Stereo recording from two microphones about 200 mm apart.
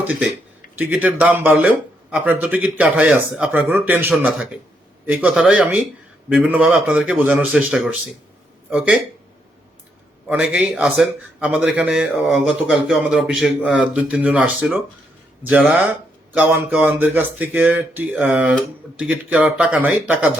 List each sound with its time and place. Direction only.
0.8 s a man's voice: 10° right (ahead or behind)
10.2 s a man's voice: 5° right (ahead or behind)